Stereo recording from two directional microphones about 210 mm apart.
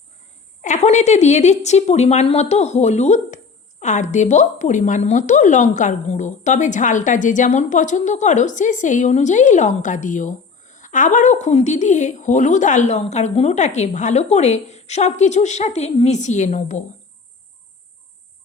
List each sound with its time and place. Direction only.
0.6 s a woman's voice: 35° left (ahead or behind)